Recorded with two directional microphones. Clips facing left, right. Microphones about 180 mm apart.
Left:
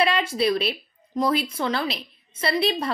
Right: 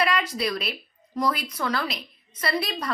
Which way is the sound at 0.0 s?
25° left (ahead or behind).